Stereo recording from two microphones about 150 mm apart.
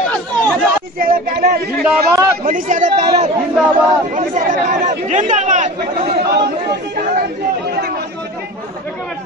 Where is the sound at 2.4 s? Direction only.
60° right (ahead or behind).